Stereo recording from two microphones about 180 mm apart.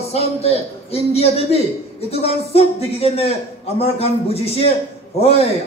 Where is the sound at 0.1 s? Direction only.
35° left (ahead or behind).